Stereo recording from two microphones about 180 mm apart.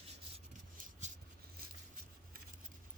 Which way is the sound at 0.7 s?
50° right (ahead or behind).